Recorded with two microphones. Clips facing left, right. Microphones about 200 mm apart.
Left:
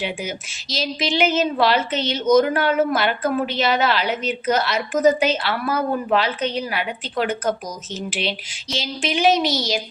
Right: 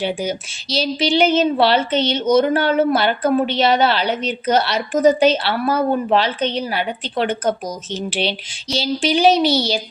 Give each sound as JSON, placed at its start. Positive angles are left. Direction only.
{"t": 0.7, "sound": "a woman's voice", "side_deg": -30}